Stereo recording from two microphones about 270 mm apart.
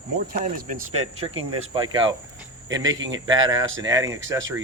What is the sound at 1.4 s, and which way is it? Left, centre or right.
Speech, right.